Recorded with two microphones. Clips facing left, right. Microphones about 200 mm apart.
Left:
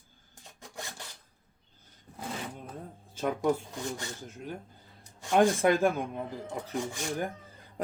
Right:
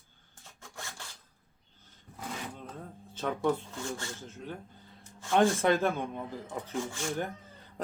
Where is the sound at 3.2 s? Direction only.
10° left (ahead or behind).